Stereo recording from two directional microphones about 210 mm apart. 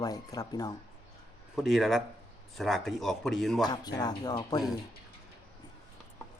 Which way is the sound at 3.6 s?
20° left (ahead or behind).